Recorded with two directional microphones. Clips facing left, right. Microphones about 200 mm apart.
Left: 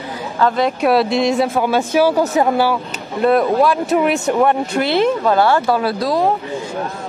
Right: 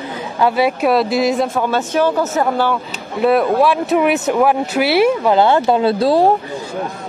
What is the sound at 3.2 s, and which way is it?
Speech, 5° right (ahead or behind).